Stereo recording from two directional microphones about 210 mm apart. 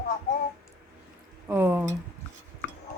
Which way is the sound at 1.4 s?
10° right (ahead or behind).